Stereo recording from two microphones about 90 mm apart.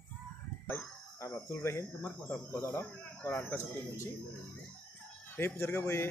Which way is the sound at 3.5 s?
35° left (ahead or behind).